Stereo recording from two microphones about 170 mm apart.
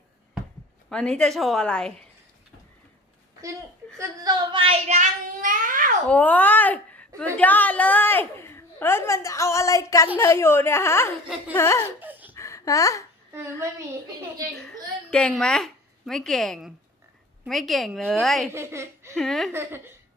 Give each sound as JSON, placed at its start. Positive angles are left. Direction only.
{"t": 0.9, "sound": "a woman's voice", "side_deg": 5}
{"t": 3.9, "sound": "speech", "side_deg": -20}
{"t": 6.1, "sound": "a woman's voice", "side_deg": 10}
{"t": 11.9, "sound": "laughter", "side_deg": -10}
{"t": 12.4, "sound": "a sound", "side_deg": 20}
{"t": 13.3, "sound": "a woman's voice", "side_deg": -15}
{"t": 15.1, "sound": "a woman's voice", "side_deg": 5}
{"t": 18.5, "sound": "speech", "side_deg": -15}
{"t": 19.1, "sound": "a woman's voice", "side_deg": 0}
{"t": 19.5, "sound": "a woman's voice", "side_deg": -15}